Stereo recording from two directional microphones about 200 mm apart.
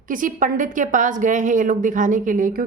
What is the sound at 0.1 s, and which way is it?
Speech, 40° right (ahead or behind).